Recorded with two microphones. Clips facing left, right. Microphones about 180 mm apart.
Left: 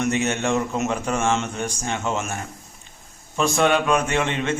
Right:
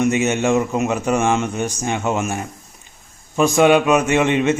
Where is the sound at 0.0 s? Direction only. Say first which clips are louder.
Right 5 dB; 15° right (ahead or behind).